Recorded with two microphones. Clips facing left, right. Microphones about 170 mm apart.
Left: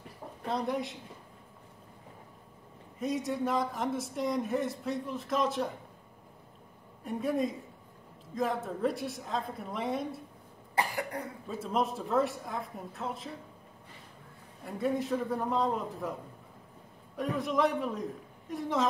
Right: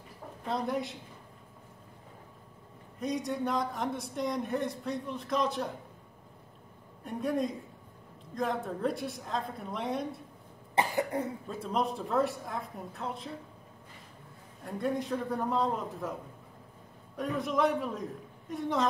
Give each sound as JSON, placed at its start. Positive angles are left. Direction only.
{"t": 0.5, "sound": "a man's voice", "side_deg": 0}
{"t": 3.0, "sound": "a man's voice", "side_deg": 0}
{"t": 7.1, "sound": "a man's voice", "side_deg": 0}
{"t": 10.7, "sound": "cough", "side_deg": -25}
{"t": 11.4, "sound": "a man's voice", "side_deg": 0}
{"t": 14.6, "sound": "a man's voice", "side_deg": 0}
{"t": 17.2, "sound": "a man's voice", "side_deg": 0}